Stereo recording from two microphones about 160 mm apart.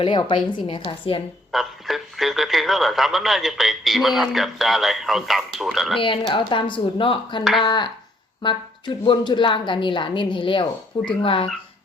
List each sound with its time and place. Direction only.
0.0 s speech: 30° left (ahead or behind)
1.5 s speech: centre (ahead or behind)
6.0 s speech: 30° left (ahead or behind)